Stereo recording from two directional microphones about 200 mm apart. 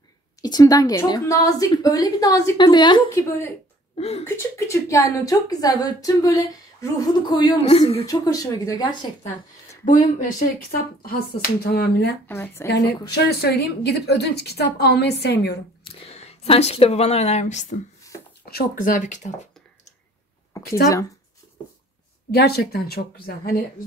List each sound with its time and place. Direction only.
0.4 s a woman's voice: 20° left (ahead or behind)
8.0 s a woman's voice: 20° left (ahead or behind)
9.8 s speech: 40° left (ahead or behind)
12.3 s a woman's voice: 10° left (ahead or behind)
12.6 s a woman's voice: 60° left (ahead or behind)
15.8 s speech: 30° left (ahead or behind)
18.4 s speech: 50° left (ahead or behind)
20.5 s a sound: 15° left (ahead or behind)
22.3 s speech: 55° left (ahead or behind)